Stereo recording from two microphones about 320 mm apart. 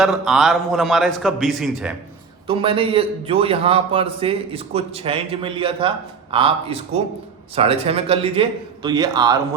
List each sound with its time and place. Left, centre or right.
0.0 s a man's voice: centre
2.5 s a man's voice: centre